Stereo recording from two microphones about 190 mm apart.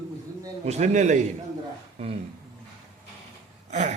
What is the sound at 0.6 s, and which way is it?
A man's voice, 35° right (ahead or behind).